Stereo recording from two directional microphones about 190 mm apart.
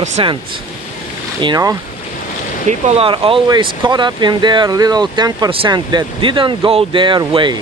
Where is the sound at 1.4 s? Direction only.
20° right (ahead or behind).